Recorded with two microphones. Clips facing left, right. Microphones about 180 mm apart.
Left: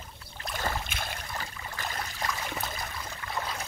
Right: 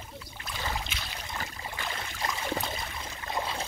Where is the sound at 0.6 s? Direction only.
50° left (ahead or behind).